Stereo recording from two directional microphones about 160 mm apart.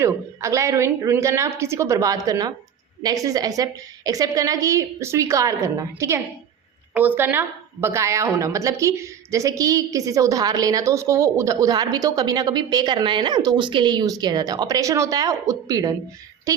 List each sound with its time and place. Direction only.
0.0 s a woman's voice: 20° right (ahead or behind)